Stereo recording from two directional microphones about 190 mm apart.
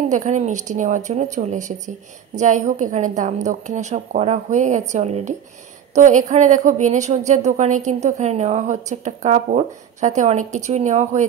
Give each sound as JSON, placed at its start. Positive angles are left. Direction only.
{"t": 0.1, "sound": "a woman's voice", "side_deg": -40}